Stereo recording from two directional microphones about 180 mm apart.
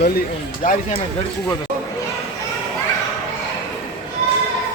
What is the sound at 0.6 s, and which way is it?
Speech, 45° left (ahead or behind).